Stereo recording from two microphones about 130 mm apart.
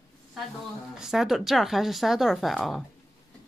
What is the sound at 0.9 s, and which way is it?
Speech, 5° right (ahead or behind).